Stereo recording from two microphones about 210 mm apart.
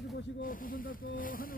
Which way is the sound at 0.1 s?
45° left (ahead or behind).